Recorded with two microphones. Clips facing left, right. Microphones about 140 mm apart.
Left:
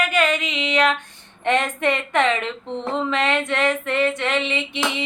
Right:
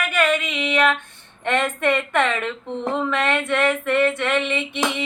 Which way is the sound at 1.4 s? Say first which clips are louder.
Left 1 dB; 15° left (ahead or behind).